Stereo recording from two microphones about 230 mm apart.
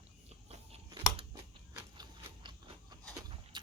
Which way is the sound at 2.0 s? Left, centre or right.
Centre.